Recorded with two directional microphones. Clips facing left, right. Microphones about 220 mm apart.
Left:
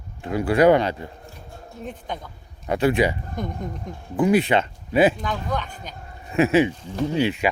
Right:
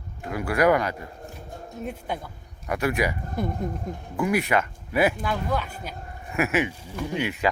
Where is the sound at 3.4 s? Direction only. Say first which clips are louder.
Right 4 dB; 5° right (ahead or behind).